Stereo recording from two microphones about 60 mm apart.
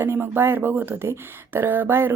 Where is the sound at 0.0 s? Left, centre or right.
Right.